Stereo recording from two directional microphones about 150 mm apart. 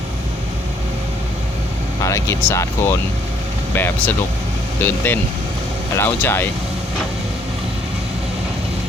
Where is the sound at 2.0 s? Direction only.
20° left (ahead or behind).